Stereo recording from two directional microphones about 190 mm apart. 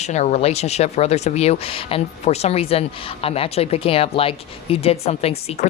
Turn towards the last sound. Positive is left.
turn(degrees=35)  # may be behind; listen again after turning